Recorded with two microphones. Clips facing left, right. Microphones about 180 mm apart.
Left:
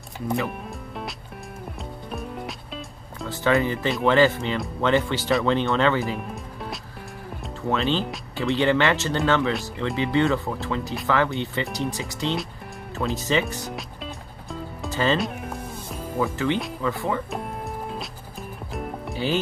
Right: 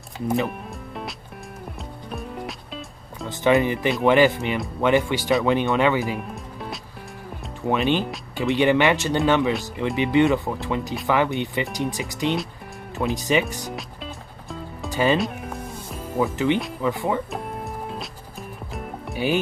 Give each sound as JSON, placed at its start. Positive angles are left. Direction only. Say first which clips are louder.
{"t": 0.5, "sound": "music", "louder": "even", "side_deg": 0}
{"t": 3.3, "sound": "speech", "louder": "right 3 dB", "side_deg": -20}
{"t": 6.2, "sound": "music", "louder": "even", "side_deg": 0}
{"t": 7.6, "sound": "speech", "louder": "right 2 dB", "side_deg": -15}
{"t": 13.7, "sound": "music", "louder": "even", "side_deg": 0}
{"t": 14.9, "sound": "music", "louder": "right 2 dB", "side_deg": -15}
{"t": 15.1, "sound": "music", "louder": "right 2 dB", "side_deg": 0}
{"t": 16.8, "sound": "speech", "louder": "right 2 dB", "side_deg": -15}
{"t": 17.3, "sound": "music", "louder": "even", "side_deg": 0}